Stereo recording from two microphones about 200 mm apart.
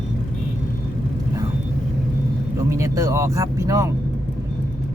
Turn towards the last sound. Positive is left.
turn(degrees=-15)  # may be behind; listen again after turning